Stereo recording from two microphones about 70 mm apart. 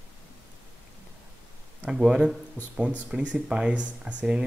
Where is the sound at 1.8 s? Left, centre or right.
Centre.